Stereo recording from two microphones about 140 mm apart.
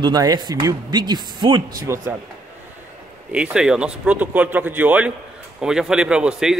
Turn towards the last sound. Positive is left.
turn(degrees=-5)  # may be behind; listen again after turning